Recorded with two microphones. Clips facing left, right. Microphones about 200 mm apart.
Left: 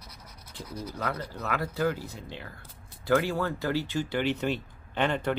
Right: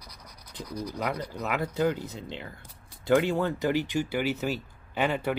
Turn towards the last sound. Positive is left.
turn(degrees=-5)  # may be behind; listen again after turning